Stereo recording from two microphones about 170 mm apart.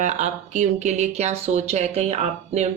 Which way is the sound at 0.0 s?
45° right (ahead or behind).